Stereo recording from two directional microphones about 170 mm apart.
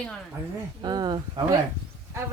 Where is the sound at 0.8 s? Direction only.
25° right (ahead or behind).